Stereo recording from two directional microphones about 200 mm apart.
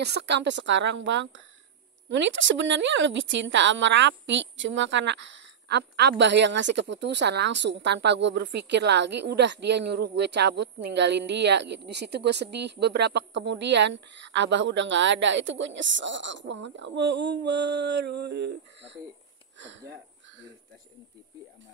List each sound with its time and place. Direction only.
0.0 s a woman's voice: 55° right (ahead or behind)